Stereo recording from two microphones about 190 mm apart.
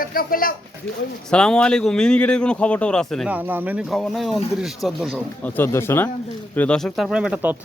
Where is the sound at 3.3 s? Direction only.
10° right (ahead or behind).